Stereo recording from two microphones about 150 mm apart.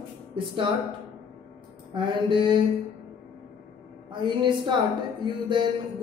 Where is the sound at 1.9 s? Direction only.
35° right (ahead or behind).